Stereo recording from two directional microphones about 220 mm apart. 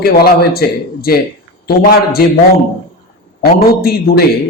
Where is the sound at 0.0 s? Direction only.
45° left (ahead or behind).